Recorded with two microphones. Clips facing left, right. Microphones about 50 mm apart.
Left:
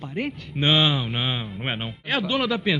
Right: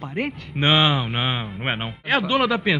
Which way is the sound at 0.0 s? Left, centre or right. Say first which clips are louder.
Right 2 dB; right.